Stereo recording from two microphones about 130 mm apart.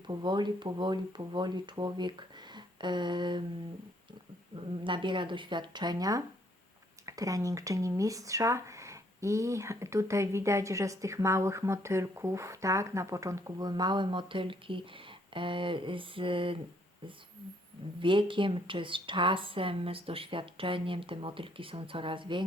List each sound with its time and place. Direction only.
0.1 s speech: 35° right (ahead or behind)
4.5 s speech: 40° right (ahead or behind)
18.0 s speech: 40° right (ahead or behind)